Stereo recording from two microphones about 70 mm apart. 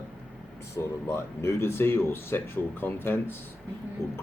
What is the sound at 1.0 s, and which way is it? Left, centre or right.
Speech, left.